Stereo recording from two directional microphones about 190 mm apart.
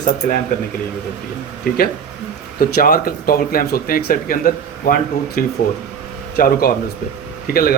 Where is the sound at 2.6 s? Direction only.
55° left (ahead or behind).